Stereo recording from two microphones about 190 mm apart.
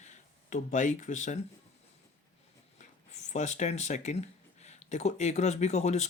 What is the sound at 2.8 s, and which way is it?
Speech, 40° left (ahead or behind).